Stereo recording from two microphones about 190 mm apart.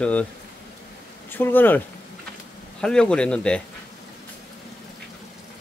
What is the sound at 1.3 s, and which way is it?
Speech, 10° left (ahead or behind).